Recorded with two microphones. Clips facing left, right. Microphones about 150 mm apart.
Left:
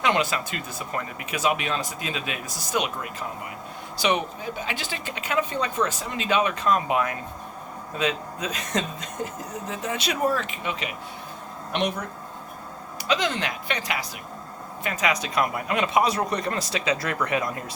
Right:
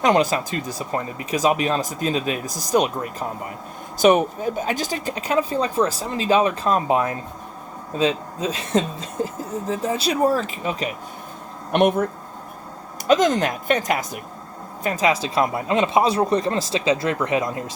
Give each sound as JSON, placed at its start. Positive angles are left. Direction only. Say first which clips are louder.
{"t": 0.0, "sound": "speech", "louder": "right 6 dB", "side_deg": -40}
{"t": 11.7, "sound": "speech", "louder": "right 9 dB", "side_deg": -50}
{"t": 13.1, "sound": "speech", "louder": "right 8 dB", "side_deg": -45}
{"t": 14.8, "sound": "speech", "louder": "right 5 dB", "side_deg": -35}